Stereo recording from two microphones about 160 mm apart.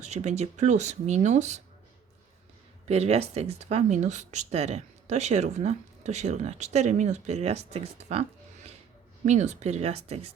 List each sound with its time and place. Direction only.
0.0 s speech: 45° right (ahead or behind)
2.8 s speech: 40° right (ahead or behind)